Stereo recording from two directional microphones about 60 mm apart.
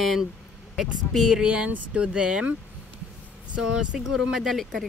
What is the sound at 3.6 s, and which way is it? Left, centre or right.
Speech, centre.